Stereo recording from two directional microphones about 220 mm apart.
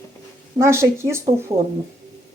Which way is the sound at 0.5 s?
10° right (ahead or behind).